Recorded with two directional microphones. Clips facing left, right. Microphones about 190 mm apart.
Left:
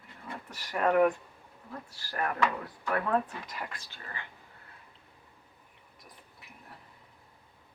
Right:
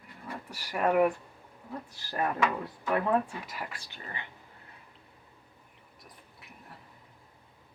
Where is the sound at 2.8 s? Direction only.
15° right (ahead or behind).